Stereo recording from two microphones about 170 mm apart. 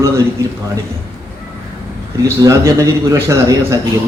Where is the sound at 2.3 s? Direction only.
20° right (ahead or behind).